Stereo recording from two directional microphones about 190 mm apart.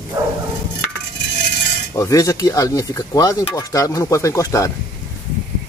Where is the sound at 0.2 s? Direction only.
20° right (ahead or behind).